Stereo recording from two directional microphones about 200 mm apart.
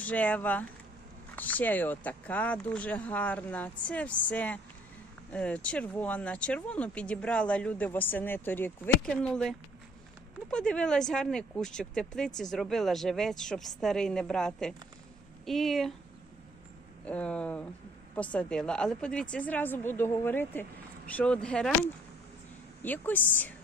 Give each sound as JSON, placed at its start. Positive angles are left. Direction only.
{"t": 0.0, "sound": "speech", "side_deg": 5}
{"t": 17.0, "sound": "speech", "side_deg": 5}
{"t": 22.8, "sound": "speech", "side_deg": 10}